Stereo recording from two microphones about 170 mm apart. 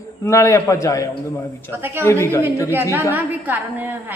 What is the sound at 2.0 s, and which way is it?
Speech, 15° left (ahead or behind).